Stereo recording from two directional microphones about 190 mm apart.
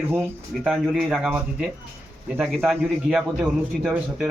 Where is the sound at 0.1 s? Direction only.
10° right (ahead or behind).